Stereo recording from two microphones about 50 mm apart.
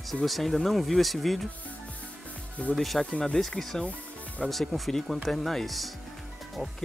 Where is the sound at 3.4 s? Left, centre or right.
Centre.